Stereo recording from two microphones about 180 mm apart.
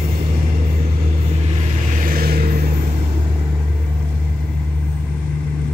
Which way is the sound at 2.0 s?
55° right (ahead or behind).